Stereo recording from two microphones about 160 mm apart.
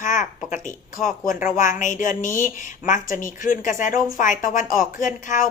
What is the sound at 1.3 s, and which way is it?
A woman's voice, 55° left (ahead or behind).